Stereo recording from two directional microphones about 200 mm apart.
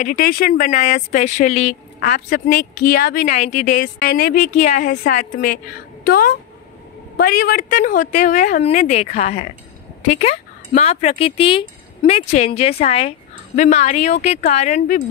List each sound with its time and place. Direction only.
0.0 s a woman's voice: 45° left (ahead or behind)